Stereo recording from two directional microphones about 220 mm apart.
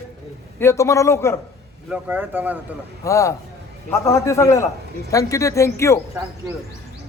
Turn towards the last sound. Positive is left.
turn(degrees=15)  # may be behind; listen again after turning